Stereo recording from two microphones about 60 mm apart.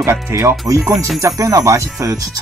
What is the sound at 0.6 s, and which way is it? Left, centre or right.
Speech, right.